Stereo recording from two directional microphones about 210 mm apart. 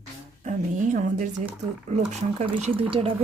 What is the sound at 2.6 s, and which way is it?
Speech, 30° right (ahead or behind).